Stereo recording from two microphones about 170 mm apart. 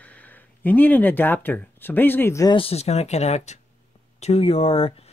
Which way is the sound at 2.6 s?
35° left (ahead or behind).